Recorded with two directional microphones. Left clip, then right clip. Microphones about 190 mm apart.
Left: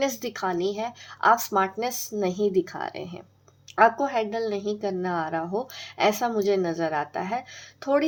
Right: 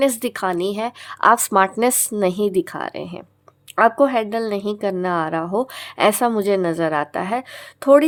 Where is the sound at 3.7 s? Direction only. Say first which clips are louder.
Right 5 dB; 45° right (ahead or behind).